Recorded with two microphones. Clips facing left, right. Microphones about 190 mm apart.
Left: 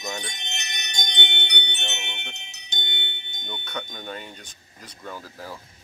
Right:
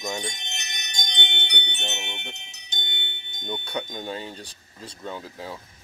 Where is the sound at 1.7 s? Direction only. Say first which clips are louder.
Right 2 dB; 70° left (ahead or behind).